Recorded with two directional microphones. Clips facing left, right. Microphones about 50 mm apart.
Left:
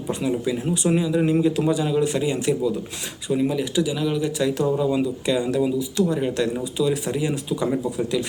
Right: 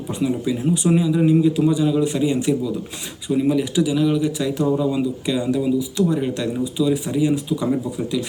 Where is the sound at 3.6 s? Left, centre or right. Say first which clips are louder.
Right 3 dB; right.